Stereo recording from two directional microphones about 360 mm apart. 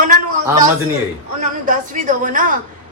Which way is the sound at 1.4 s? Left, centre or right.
Right.